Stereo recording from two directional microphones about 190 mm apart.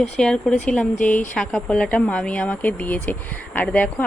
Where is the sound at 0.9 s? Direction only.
40° left (ahead or behind).